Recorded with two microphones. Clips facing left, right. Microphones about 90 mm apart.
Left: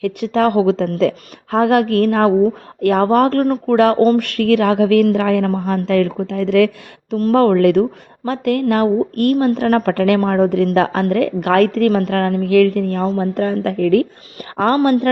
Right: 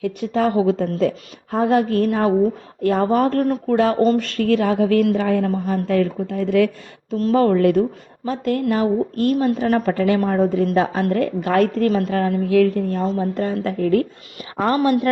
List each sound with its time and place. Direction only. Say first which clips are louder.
0.0 s a woman's voice: left 4 dB; 85° left
7.1 s a woman's voice: left 3 dB; 60° left (ahead or behind)
8.2 s a woman's voice: left 4 dB; 65° left (ahead or behind); by 11.9 s 80° left
11.9 s a woman's voice: left 3 dB; 60° left (ahead or behind)